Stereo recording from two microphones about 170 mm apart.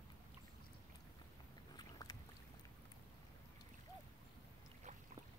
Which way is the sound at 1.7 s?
20° left (ahead or behind).